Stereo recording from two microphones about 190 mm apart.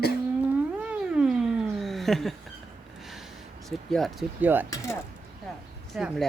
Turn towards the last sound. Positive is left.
turn(degrees=0)  # may be behind; listen again after turning